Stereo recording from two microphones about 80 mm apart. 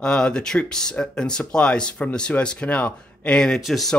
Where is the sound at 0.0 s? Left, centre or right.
Centre.